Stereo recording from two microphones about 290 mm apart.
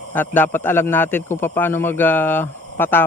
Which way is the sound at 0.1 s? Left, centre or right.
Centre.